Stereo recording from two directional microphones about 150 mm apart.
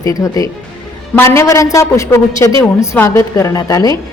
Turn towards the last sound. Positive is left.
turn(degrees=25)  # may be behind; listen again after turning